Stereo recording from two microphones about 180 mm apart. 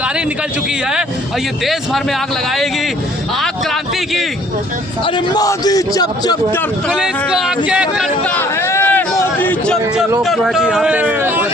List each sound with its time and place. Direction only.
5.0 s a man's voice: 25° left (ahead or behind)
6.9 s speech: 5° right (ahead or behind)
8.4 s a sound: 15° left (ahead or behind)
10.2 s speech: centre (ahead or behind)